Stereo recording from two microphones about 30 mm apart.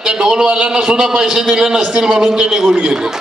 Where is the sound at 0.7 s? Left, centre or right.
Right.